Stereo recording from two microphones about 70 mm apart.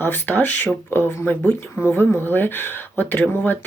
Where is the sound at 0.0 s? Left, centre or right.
Left.